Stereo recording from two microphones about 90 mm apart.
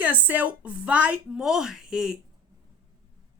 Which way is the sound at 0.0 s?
15° right (ahead or behind).